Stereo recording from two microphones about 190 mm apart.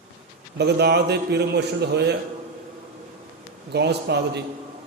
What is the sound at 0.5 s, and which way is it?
A man's voice, 60° right (ahead or behind).